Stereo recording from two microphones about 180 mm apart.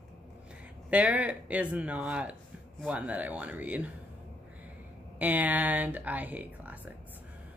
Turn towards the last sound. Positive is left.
turn(degrees=-10)  # may be behind; listen again after turning